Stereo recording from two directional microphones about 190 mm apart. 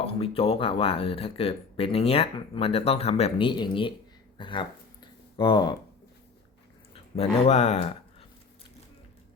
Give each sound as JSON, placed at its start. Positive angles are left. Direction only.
{"t": 0.0, "sound": "speech", "side_deg": 30}
{"t": 4.4, "sound": "a sound", "side_deg": 25}
{"t": 5.4, "sound": "speech", "side_deg": 25}
{"t": 6.9, "sound": "speech", "side_deg": 35}